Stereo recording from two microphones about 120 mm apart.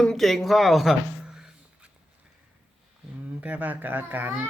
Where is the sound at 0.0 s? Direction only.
5° left (ahead or behind).